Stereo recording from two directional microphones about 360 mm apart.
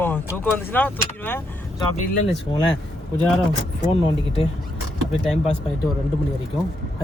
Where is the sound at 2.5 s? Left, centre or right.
Centre.